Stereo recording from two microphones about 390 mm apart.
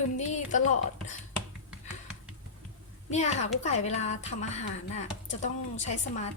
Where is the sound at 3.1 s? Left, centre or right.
Centre.